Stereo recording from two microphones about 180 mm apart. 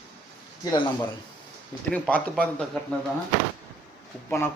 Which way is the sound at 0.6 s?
20° left (ahead or behind).